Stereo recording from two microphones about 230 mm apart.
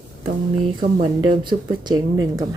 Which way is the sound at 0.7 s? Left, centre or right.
Centre.